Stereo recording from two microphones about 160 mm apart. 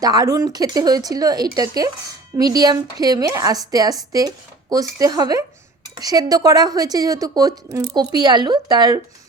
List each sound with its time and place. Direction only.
0.0 s a woman's voice: 25° right (ahead or behind)